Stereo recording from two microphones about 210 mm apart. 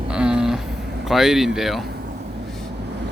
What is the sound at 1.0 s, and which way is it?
Speech, centre (ahead or behind).